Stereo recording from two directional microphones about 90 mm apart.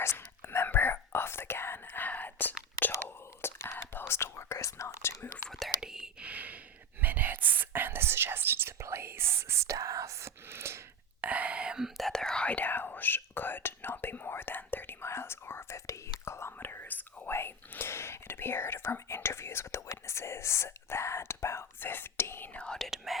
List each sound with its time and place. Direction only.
0.0 s whispering: 30° left (ahead or behind)
5.5 s whispering: centre (ahead or behind); by 10.8 s 30° right (ahead or behind)
11.2 s whispering: 15° right (ahead or behind); by 22.9 s 10° left (ahead or behind)